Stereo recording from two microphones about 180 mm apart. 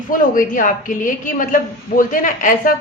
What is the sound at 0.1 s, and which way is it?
A woman's voice, 50° left (ahead or behind).